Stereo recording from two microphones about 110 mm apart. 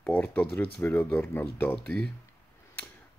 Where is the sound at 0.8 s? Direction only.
20° left (ahead or behind).